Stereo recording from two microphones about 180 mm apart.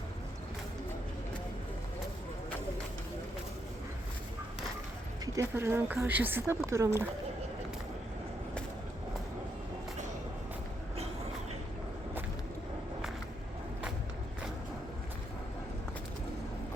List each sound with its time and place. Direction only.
5.2 s speech: 20° right (ahead or behind)